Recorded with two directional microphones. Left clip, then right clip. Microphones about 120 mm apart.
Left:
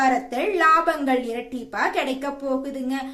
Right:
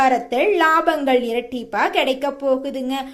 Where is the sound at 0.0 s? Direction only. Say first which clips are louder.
Right 5 dB; 30° right (ahead or behind).